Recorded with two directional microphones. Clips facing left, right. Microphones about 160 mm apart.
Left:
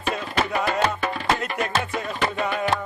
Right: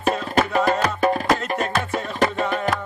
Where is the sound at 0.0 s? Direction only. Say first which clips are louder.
Right 5 dB; 40° right (ahead or behind).